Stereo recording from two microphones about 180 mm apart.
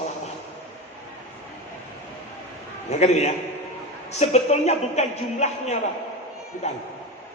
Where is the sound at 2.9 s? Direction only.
40° left (ahead or behind).